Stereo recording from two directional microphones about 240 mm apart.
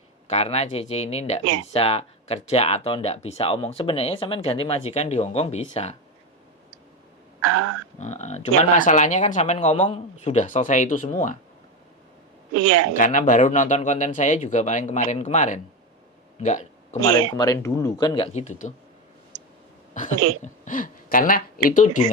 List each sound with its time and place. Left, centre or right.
0.3 s speech: left
7.4 s speech: right
7.9 s speech: left
12.5 s speech: right
13.0 s speech: left
17.3 s speech: centre
20.4 s speech: left